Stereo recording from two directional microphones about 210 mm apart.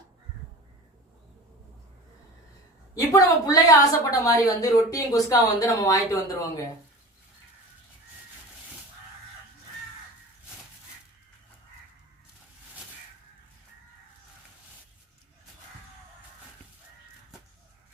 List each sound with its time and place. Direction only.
2.9 s a woman's voice: 15° left (ahead or behind)